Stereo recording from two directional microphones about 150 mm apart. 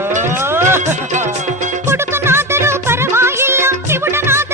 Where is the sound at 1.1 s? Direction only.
55° right (ahead or behind).